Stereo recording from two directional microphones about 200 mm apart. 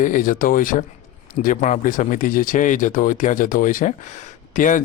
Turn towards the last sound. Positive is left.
turn(degrees=40)  # may be behind; listen again after turning